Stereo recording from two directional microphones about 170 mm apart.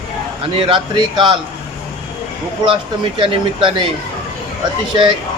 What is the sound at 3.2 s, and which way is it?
Speech, 30° right (ahead or behind).